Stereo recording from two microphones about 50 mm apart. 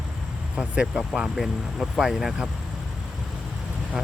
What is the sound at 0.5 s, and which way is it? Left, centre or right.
Speech, centre.